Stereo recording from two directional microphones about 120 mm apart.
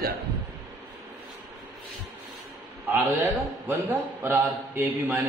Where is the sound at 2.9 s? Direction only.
20° right (ahead or behind).